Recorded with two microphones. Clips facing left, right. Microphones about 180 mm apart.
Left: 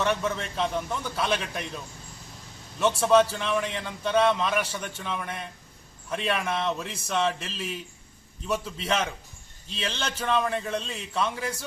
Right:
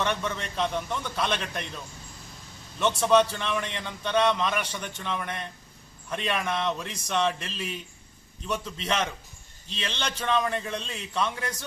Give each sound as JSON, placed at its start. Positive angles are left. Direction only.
{"t": 0.0, "sound": "a man's voice", "side_deg": 5}